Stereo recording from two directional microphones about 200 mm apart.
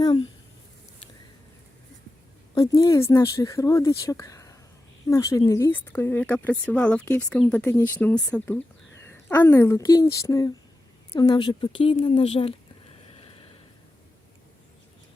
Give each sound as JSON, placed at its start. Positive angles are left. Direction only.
{"t": 0.0, "sound": "a woman's voice", "side_deg": 20}
{"t": 2.6, "sound": "a woman's voice", "side_deg": 20}
{"t": 13.1, "sound": "a sound", "side_deg": 30}